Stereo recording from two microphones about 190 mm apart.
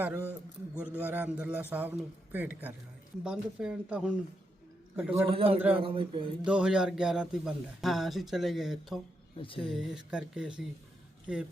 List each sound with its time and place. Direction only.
0.3 s speech: 5° right (ahead or behind)
5.3 s a man's voice: 30° right (ahead or behind)
6.4 s speech: 5° right (ahead or behind)
9.4 s speech: 25° left (ahead or behind)
9.6 s speech: 5° right (ahead or behind)